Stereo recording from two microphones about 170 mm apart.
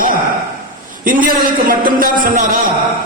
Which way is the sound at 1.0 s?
55° right (ahead or behind).